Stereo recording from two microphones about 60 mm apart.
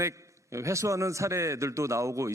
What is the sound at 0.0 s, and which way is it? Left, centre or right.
A man's voice, right.